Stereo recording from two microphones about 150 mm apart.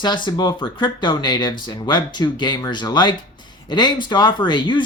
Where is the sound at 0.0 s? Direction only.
30° left (ahead or behind).